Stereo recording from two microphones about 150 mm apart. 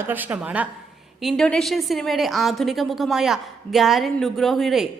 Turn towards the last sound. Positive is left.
turn(degrees=0)  # may be behind; listen again after turning